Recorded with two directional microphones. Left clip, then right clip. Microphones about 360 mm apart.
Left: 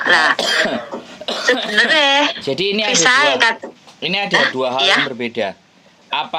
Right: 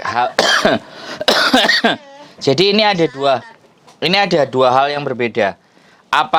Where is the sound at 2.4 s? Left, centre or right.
Right.